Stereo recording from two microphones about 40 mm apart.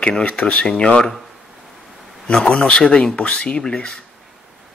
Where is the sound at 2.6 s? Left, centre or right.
Left.